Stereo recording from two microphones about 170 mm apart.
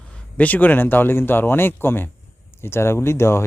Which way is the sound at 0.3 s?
10° left (ahead or behind).